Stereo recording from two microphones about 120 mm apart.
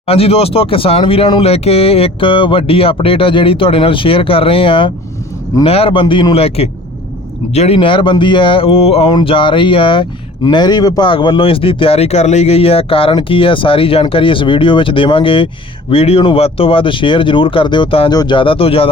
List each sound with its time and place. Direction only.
0.0 s speech: 55° left (ahead or behind)
7.8 s speech: 45° left (ahead or behind)